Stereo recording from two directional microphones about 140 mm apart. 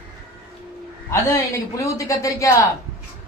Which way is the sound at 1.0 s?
20° left (ahead or behind).